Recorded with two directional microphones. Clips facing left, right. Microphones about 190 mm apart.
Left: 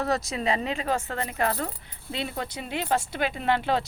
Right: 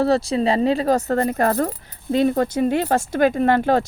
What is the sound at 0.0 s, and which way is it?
Speech, 30° right (ahead or behind).